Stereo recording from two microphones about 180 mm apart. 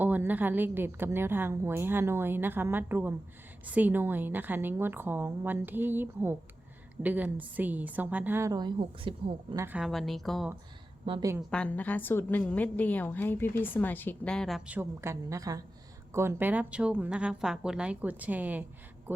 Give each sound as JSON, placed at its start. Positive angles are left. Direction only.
{"t": 0.0, "sound": "a woman's voice", "side_deg": -10}
{"t": 9.6, "sound": "a woman's voice", "side_deg": -10}
{"t": 11.0, "sound": "a woman's voice", "side_deg": -30}
{"t": 11.3, "sound": "a woman's voice", "side_deg": 5}
{"t": 14.8, "sound": "a woman's voice", "side_deg": -15}